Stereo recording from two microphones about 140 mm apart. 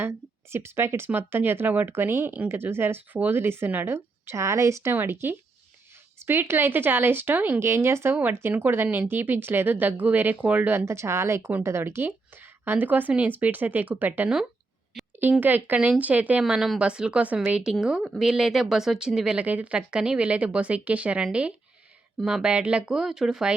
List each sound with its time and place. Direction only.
0.5 s speech: 20° right (ahead or behind)